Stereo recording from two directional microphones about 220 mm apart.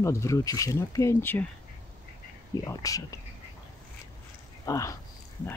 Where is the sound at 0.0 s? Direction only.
15° left (ahead or behind).